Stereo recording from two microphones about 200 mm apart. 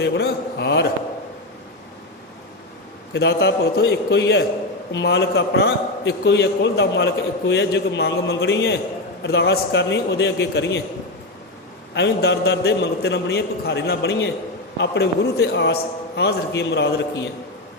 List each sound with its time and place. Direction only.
0.0 s a man's voice: 55° left (ahead or behind)
3.1 s a man's voice: 55° left (ahead or behind)
11.9 s a man's voice: 60° left (ahead or behind)